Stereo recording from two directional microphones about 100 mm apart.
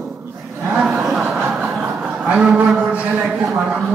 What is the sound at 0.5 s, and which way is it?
Speech, 20° right (ahead or behind).